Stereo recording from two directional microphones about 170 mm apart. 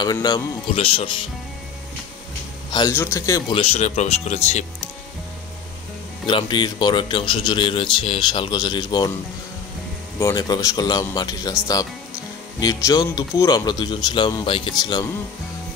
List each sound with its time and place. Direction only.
0.0 s speech: 25° left (ahead or behind)
2.9 s speech: 15° left (ahead or behind)
3.5 s speech: 35° left (ahead or behind)
6.2 s speech: 25° left (ahead or behind)
10.1 s speech: 20° left (ahead or behind)